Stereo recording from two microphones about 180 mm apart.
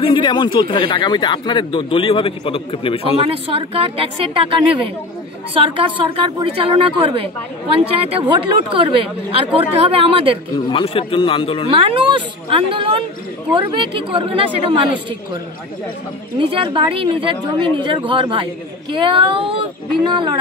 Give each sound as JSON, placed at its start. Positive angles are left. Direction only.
{"t": 0.0, "sound": "speech", "side_deg": 25}
{"t": 3.3, "sound": "a woman's voice", "side_deg": -30}
{"t": 10.5, "sound": "speech", "side_deg": 30}
{"t": 11.7, "sound": "speech", "side_deg": -30}
{"t": 16.3, "sound": "speech", "side_deg": -30}